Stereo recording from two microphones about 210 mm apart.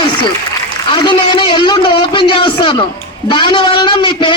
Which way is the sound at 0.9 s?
20° left (ahead or behind).